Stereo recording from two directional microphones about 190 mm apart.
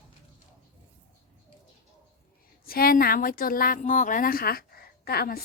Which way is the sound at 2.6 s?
50° left (ahead or behind).